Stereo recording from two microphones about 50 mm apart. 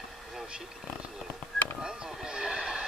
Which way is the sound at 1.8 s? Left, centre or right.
Centre.